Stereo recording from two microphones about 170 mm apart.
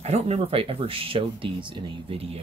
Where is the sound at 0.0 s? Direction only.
40° right (ahead or behind).